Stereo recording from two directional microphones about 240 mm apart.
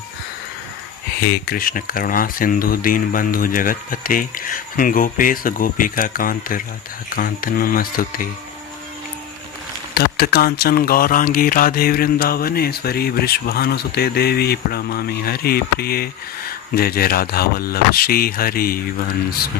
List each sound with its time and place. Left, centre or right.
1.3 s speech: left
9.9 s speech: left